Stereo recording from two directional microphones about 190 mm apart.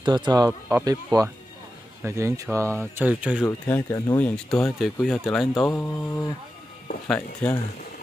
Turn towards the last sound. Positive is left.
turn(degrees=5)  # may be behind; listen again after turning